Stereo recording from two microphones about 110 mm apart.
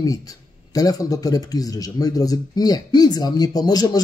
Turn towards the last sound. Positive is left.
turn(degrees=35)  # may be behind; listen again after turning